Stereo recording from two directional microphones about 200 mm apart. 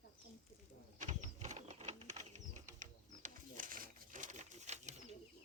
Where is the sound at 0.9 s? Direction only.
40° right (ahead or behind).